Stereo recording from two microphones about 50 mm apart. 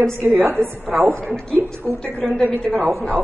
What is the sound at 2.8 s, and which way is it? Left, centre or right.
Speech, right.